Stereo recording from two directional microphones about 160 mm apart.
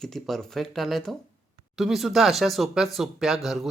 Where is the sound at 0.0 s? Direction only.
5° left (ahead or behind).